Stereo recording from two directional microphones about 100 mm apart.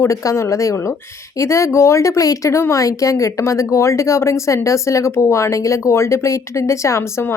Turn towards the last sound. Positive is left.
turn(degrees=25)  # may be behind; listen again after turning